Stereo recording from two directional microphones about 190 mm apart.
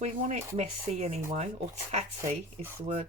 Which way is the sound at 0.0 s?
35° right (ahead or behind).